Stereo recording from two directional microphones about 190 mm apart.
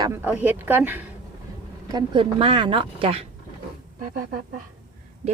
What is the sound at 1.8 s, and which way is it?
Speech, 25° right (ahead or behind).